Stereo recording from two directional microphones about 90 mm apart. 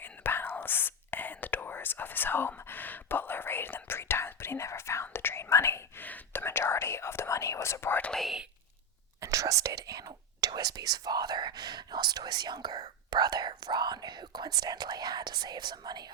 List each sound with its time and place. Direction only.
0.0 s whispering: 25° left (ahead or behind)
8.1 s whispering: centre (ahead or behind)
9.2 s whispering: 40° right (ahead or behind)